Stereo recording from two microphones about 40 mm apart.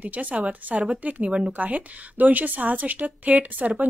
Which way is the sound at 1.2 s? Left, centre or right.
Right.